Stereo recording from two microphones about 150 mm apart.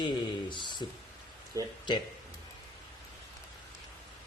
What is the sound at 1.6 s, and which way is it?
Speech, 20° right (ahead or behind).